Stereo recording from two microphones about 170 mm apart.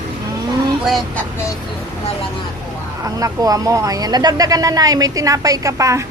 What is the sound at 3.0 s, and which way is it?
Speech, 20° right (ahead or behind).